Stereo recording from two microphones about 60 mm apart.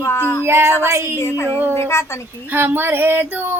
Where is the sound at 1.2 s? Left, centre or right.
Left.